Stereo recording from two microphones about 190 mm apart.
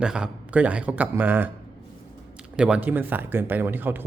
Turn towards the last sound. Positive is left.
turn(degrees=-10)  # may be behind; listen again after turning